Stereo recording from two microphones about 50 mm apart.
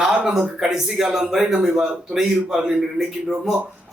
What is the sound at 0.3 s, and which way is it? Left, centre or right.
A man's voice, centre.